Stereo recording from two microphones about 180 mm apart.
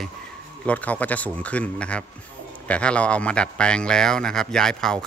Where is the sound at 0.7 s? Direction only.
10° left (ahead or behind).